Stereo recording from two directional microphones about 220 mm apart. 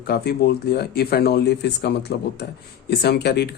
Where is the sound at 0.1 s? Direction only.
45° left (ahead or behind).